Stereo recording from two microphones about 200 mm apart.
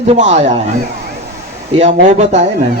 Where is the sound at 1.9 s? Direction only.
35° right (ahead or behind).